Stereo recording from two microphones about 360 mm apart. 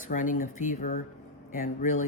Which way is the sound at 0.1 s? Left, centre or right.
Left.